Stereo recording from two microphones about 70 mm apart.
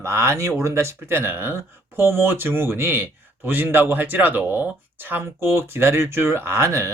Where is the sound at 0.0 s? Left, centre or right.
Right.